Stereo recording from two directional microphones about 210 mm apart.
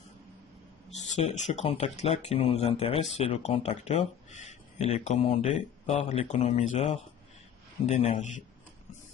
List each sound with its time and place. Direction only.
0.9 s speech: 35° left (ahead or behind)